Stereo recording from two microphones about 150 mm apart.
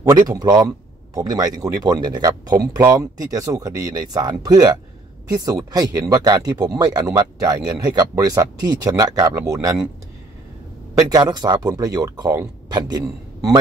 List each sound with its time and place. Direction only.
0.3 s speech: 25° right (ahead or behind)
11.0 s speech: 25° right (ahead or behind)